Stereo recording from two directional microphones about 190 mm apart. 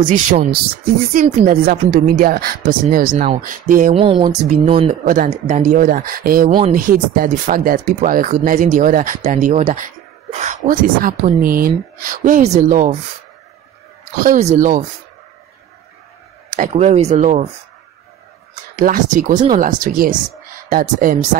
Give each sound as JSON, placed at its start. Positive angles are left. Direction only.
{"t": 0.1, "sound": "speech", "side_deg": -45}
{"t": 3.9, "sound": "speech", "side_deg": -30}
{"t": 5.0, "sound": "speech", "side_deg": -45}
{"t": 14.2, "sound": "speech", "side_deg": -40}
{"t": 16.4, "sound": "speech", "side_deg": -40}
{"t": 18.8, "sound": "speech", "side_deg": -45}